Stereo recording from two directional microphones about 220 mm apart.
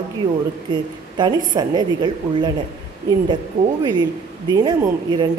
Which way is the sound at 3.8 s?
20° right (ahead or behind).